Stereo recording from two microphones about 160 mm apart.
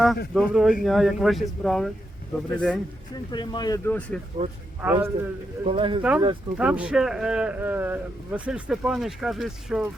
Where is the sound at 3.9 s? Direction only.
10° left (ahead or behind).